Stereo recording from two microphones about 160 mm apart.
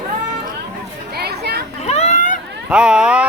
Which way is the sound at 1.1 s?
85° right.